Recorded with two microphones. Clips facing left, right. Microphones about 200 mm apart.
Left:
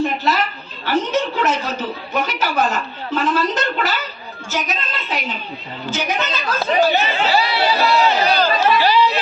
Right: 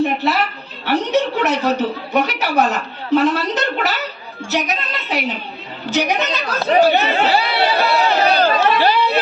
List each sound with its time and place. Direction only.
0.2 s a sound: 65° right (ahead or behind)
5.8 s a woman's voice: 65° right (ahead or behind)
6.5 s chatter: 60° right (ahead or behind)